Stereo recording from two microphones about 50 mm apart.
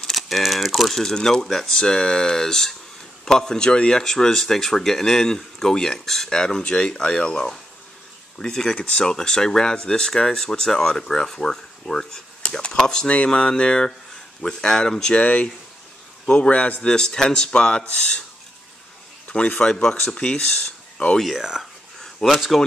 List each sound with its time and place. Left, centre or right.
0.0 s speech: centre
15.1 s speech: left
16.8 s speech: centre
19.2 s speech: left
19.6 s speech: centre
21.4 s speech: centre
22.2 s speech: centre